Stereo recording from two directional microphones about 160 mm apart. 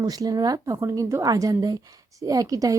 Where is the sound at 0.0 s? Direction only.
25° right (ahead or behind).